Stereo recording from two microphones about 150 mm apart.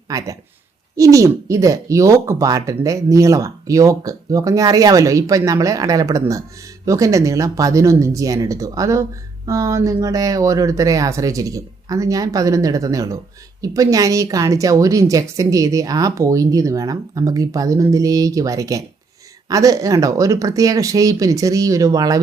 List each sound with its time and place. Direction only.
0.1 s speech: 20° right (ahead or behind)